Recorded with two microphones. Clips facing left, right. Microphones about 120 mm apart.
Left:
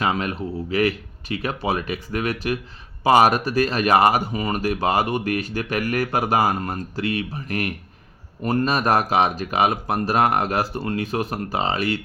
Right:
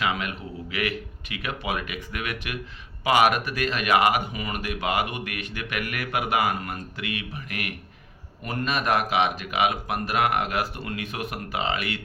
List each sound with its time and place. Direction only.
0.0 s speech: 35° left (ahead or behind)